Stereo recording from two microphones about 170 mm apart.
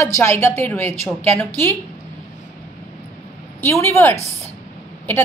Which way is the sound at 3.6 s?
15° left (ahead or behind).